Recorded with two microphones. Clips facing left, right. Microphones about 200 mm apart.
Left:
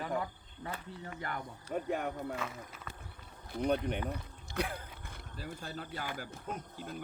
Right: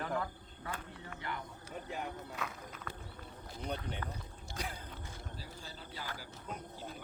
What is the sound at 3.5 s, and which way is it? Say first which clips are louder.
Speech: left 9 dB; 60° left (ahead or behind).